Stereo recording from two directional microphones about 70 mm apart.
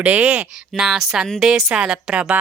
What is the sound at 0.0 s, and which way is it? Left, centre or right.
Speech, centre.